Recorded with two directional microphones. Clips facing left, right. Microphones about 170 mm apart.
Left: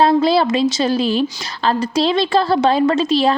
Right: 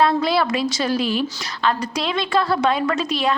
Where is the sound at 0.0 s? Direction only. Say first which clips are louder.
Left 5 dB; 30° left (ahead or behind).